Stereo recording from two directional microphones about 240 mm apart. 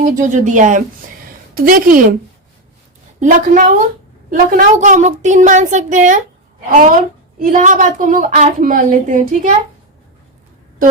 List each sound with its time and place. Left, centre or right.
0.0 s a woman's voice: right
3.2 s a woman's voice: right